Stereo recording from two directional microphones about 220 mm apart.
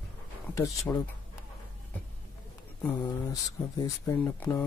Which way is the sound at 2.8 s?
10° left (ahead or behind).